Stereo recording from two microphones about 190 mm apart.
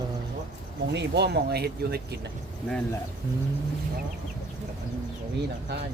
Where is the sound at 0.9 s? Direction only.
65° right (ahead or behind).